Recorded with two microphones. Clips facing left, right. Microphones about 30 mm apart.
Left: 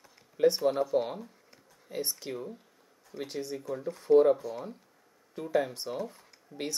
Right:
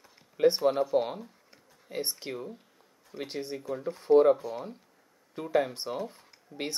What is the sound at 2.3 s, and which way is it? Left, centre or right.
Speech, centre.